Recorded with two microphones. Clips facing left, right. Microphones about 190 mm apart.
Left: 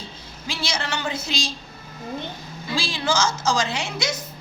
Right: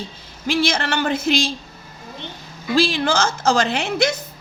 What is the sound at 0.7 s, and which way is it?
Speech, 60° right (ahead or behind).